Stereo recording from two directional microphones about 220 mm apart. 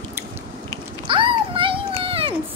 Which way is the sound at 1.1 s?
25° right (ahead or behind).